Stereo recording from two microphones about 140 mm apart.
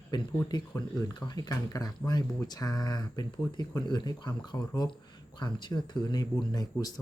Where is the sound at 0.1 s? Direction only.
35° left (ahead or behind).